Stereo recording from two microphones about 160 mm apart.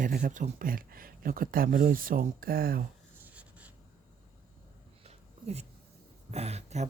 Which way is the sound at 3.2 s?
10° right (ahead or behind).